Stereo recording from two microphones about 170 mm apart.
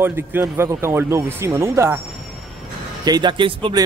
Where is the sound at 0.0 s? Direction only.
15° right (ahead or behind).